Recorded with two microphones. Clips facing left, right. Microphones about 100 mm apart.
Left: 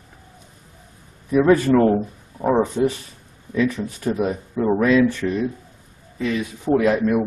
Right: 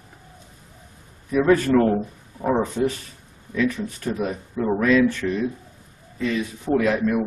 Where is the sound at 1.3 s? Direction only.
15° left (ahead or behind).